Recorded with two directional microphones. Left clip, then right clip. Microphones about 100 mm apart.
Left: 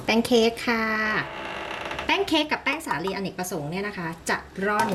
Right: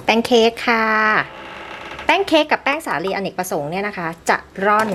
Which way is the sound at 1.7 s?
20° left (ahead or behind).